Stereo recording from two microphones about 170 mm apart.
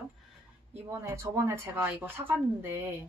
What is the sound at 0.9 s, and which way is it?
Speech, 15° right (ahead or behind).